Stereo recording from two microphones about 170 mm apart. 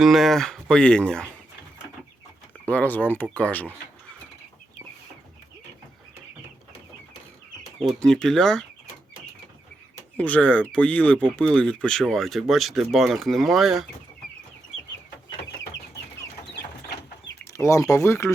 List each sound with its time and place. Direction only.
0.0 s speech: centre (ahead or behind)
2.6 s speech: 10° left (ahead or behind)
7.8 s speech: 5° left (ahead or behind)
10.2 s speech: 5° left (ahead or behind)
17.4 s speech: 15° left (ahead or behind)